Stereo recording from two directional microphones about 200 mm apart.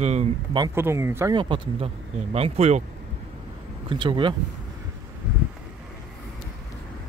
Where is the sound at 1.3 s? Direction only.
25° right (ahead or behind).